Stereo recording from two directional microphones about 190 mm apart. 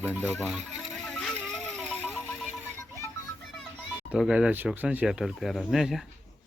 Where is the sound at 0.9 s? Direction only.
5° left (ahead or behind).